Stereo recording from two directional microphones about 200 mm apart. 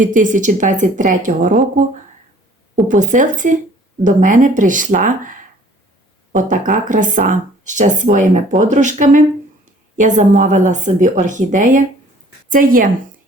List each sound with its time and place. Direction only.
0.0 s speech: 40° right (ahead or behind)
2.9 s speech: 40° right (ahead or behind)
6.7 s a woman's voice: 40° right (ahead or behind)